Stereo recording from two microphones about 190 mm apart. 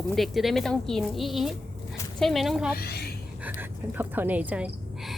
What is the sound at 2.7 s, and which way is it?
Speech, 55° left (ahead or behind).